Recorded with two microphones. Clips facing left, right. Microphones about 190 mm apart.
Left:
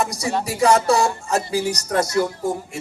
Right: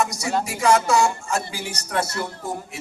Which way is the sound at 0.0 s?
35° left (ahead or behind).